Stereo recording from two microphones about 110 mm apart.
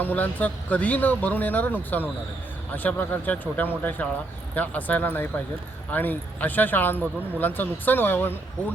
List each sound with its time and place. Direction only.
0.0 s speech: 15° left (ahead or behind)